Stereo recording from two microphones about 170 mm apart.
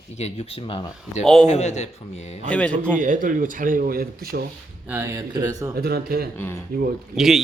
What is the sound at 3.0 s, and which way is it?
Speech, 50° right (ahead or behind).